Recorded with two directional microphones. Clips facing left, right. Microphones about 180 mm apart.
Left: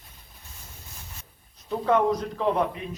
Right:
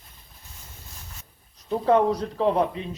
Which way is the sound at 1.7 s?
35° right (ahead or behind).